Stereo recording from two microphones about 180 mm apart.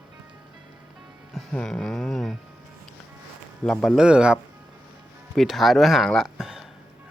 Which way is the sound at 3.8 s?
Centre (ahead or behind).